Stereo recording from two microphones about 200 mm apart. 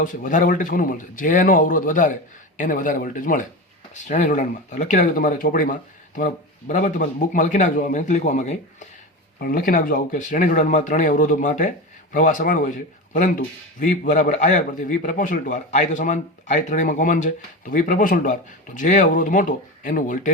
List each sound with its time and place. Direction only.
0.0 s a man's voice: 40° left (ahead or behind)